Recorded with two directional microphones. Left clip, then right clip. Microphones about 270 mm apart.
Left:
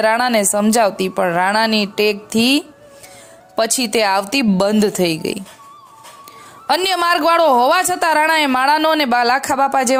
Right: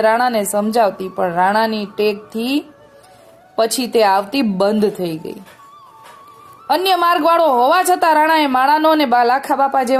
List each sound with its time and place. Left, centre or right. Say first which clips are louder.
0.0 s speech: even; left
6.7 s speech: right 1 dB; left